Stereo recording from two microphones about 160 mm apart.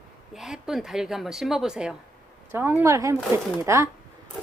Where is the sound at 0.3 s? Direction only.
5° right (ahead or behind).